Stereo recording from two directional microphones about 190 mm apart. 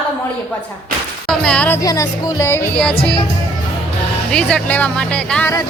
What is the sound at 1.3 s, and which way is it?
Speech, 5° left (ahead or behind).